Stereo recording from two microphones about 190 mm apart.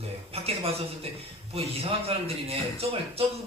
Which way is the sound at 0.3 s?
30° right (ahead or behind).